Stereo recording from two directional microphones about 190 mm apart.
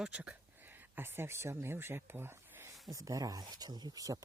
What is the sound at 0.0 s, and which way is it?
Speech, 5° right (ahead or behind).